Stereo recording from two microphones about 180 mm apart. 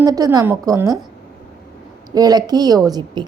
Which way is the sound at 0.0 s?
20° right (ahead or behind).